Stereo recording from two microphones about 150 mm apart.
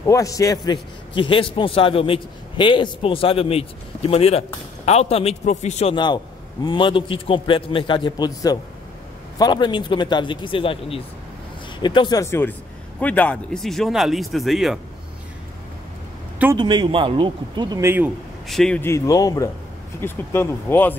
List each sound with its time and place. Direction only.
0.0 s a man's voice: 20° left (ahead or behind); by 5.9 s 50° left (ahead or behind)
5.9 s a man's voice: 30° left (ahead or behind); by 14.8 s centre (ahead or behind)
16.5 s speech: 30° right (ahead or behind); by 18.1 s 15° right (ahead or behind)
18.5 s speech: 5° left (ahead or behind)
18.8 s speech: 20° left (ahead or behind)